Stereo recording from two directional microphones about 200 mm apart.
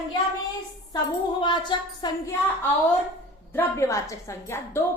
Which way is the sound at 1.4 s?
20° left (ahead or behind).